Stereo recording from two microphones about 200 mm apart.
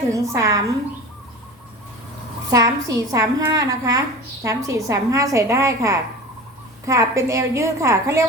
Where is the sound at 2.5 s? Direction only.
15° right (ahead or behind).